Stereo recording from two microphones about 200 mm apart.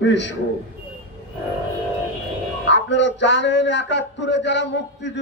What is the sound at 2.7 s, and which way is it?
A man's voice, 65° left (ahead or behind).